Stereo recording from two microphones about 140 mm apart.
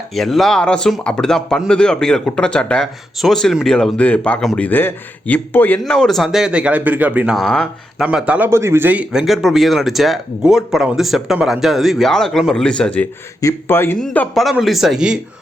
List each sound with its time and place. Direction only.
0.1 s speech: centre (ahead or behind)
7.3 s speech: 5° left (ahead or behind)
8.0 s speech: 10° right (ahead or behind); by 14.3 s 10° left (ahead or behind)
14.3 s speech: centre (ahead or behind)